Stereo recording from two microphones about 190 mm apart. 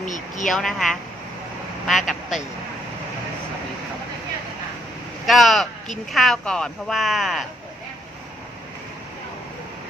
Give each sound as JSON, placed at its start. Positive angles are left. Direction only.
{"t": 0.0, "sound": "speech", "side_deg": 40}
{"t": 0.5, "sound": "speech", "side_deg": 0}
{"t": 5.2, "sound": "speech", "side_deg": 0}